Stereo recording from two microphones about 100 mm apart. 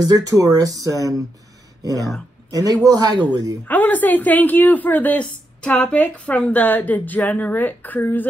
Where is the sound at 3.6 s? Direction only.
15° left (ahead or behind).